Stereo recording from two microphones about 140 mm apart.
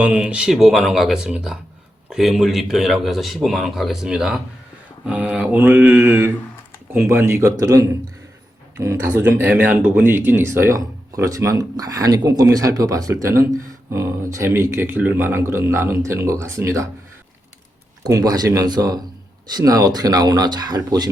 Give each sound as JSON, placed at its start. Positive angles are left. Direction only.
{"t": 0.0, "sound": "a man's voice", "side_deg": -10}
{"t": 5.0, "sound": "mantra", "side_deg": -10}
{"t": 6.9, "sound": "speech", "side_deg": -15}
{"t": 18.0, "sound": "speech", "side_deg": -25}